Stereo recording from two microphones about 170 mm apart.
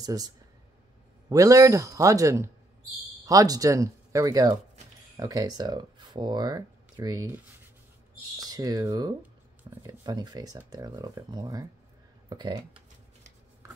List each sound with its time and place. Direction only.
0.0 s speech: 20° right (ahead or behind)
1.3 s speech: 20° right (ahead or behind)
8.4 s speech: 20° right (ahead or behind)